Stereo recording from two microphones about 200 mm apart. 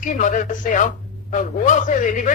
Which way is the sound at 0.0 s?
40° left (ahead or behind).